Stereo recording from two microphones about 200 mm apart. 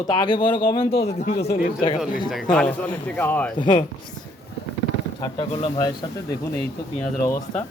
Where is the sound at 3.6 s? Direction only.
25° left (ahead or behind).